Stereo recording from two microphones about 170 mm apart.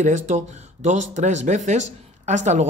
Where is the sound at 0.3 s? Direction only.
45° right (ahead or behind).